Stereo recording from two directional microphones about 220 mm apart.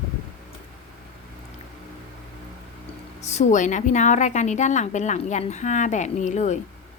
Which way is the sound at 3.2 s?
30° left (ahead or behind).